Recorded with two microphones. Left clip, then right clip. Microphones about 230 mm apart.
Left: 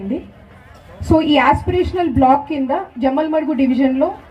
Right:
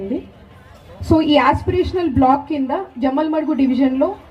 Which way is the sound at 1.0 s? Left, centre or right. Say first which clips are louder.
Left 1 dB; left.